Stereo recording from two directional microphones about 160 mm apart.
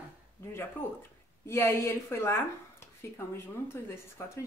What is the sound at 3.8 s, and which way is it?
Speech, 15° left (ahead or behind).